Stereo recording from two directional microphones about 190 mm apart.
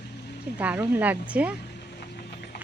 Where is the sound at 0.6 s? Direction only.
10° right (ahead or behind).